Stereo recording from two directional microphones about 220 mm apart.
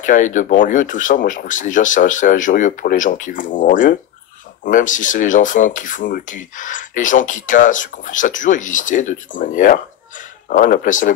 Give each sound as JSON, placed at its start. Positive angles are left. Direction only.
{"t": 0.0, "sound": "speech", "side_deg": 35}